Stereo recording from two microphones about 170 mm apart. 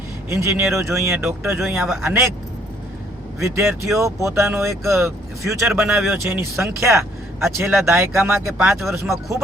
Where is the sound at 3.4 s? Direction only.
15° right (ahead or behind).